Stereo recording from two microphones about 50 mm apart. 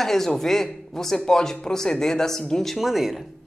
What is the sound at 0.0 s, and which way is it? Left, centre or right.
A man's voice, centre.